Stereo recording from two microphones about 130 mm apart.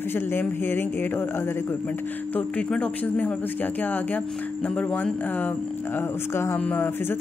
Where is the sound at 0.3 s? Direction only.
15° left (ahead or behind).